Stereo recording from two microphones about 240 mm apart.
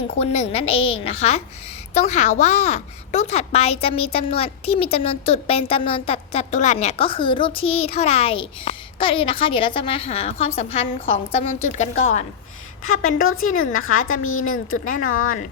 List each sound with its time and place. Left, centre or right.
0.2 s a child's voice: left
12.8 s a woman's voice: left